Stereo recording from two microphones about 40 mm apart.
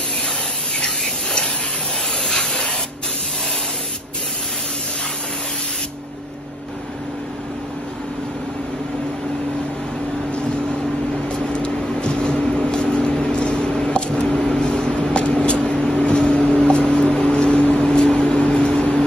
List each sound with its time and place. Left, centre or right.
0.7 s a sound: centre
2.2 s spray: centre
11.2 s vehicle: left
16.3 s a sound: left
17.8 s vehicle: centre
18.4 s vehicle: left